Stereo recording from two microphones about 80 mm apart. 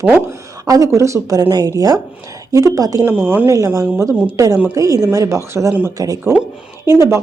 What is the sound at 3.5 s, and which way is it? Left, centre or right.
Speech, right.